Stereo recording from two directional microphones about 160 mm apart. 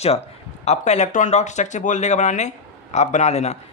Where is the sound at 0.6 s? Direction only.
45° left (ahead or behind).